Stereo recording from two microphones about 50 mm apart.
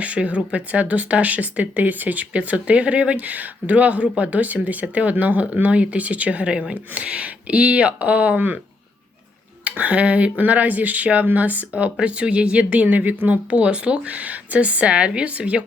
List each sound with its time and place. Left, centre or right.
0.0 s speech: right
9.6 s speech: right